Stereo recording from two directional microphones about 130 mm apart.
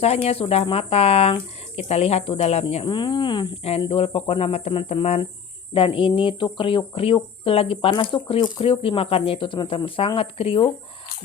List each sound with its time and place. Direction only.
0.0 s speech: 50° left (ahead or behind)
2.8 s speech: 35° left (ahead or behind)
3.6 s speech: 45° left (ahead or behind)